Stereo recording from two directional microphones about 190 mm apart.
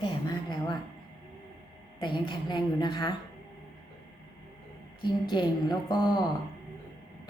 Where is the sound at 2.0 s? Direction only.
25° left (ahead or behind).